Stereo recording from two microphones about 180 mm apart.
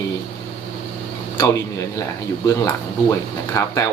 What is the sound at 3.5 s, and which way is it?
Speech, 20° left (ahead or behind).